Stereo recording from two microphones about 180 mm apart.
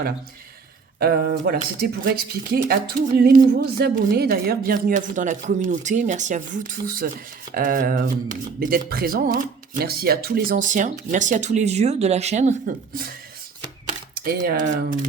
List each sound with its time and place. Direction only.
0.9 s speech: 60° right (ahead or behind)
13.8 s typing: 50° right (ahead or behind)